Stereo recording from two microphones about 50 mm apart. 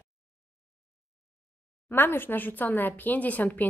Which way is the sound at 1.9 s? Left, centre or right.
Left.